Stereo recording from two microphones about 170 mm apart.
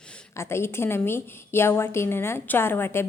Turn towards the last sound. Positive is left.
turn(degrees=15)  # may be behind; listen again after turning